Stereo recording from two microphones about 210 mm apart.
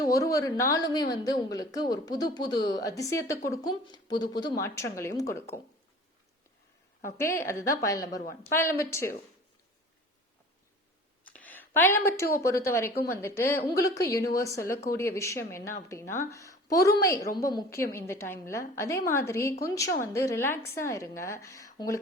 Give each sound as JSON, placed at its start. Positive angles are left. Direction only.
{"t": 0.0, "sound": "a woman's voice", "side_deg": 15}
{"t": 7.0, "sound": "a woman's voice", "side_deg": 10}
{"t": 11.3, "sound": "a woman's voice", "side_deg": 5}